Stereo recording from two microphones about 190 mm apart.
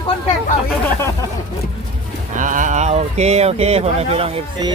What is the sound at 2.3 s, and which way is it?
Speech, 45° right (ahead or behind).